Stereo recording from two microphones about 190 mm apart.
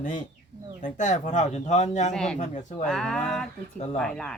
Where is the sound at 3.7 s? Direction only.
35° left (ahead or behind).